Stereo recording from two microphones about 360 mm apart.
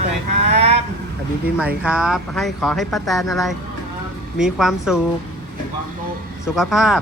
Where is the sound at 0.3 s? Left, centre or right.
Centre.